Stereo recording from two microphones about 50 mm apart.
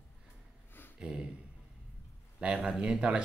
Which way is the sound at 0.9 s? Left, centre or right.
Centre.